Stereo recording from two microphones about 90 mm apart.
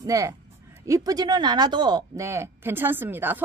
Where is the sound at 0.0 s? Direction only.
35° right (ahead or behind); by 2.0 s 55° right (ahead or behind).